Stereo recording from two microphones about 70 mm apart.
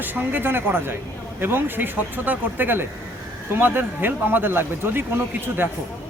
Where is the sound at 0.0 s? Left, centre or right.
Right.